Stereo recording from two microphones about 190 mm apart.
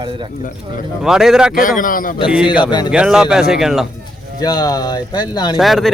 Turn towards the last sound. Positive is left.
turn(degrees=0)  # may be behind; listen again after turning